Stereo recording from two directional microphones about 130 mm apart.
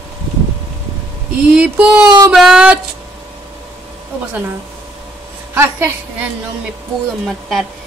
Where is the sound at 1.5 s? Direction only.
10° right (ahead or behind).